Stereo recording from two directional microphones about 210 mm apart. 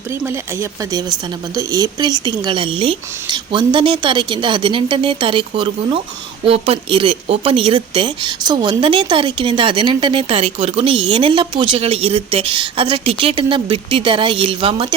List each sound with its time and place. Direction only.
0.1 s speech: 10° right (ahead or behind)